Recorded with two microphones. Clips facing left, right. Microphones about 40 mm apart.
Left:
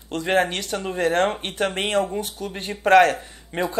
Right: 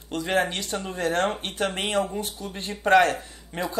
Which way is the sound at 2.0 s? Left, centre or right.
Centre.